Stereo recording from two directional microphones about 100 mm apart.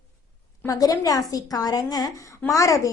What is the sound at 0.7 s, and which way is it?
A woman's voice, 35° left (ahead or behind).